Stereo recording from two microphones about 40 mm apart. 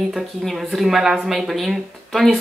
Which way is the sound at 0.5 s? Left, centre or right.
Centre.